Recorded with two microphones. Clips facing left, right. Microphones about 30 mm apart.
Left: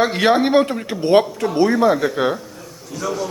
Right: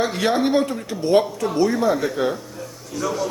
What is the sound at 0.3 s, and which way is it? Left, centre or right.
Speech, left.